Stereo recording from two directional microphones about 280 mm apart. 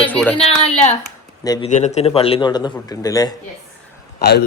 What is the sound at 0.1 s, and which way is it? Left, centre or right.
Speech, centre.